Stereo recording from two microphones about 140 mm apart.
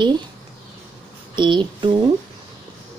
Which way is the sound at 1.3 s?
35° right (ahead or behind).